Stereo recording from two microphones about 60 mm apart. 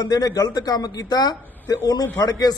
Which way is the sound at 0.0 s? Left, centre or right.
Left.